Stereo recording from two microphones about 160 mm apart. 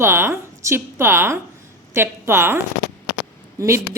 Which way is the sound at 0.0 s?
15° right (ahead or behind).